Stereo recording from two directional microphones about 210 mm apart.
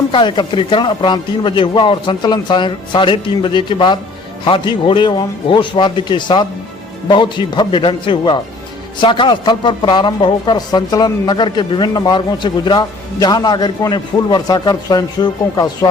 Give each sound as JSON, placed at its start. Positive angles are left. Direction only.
{"t": 0.1, "sound": "a man's voice", "side_deg": 25}